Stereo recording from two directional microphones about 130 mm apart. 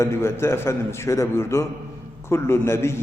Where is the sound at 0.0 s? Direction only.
20° left (ahead or behind).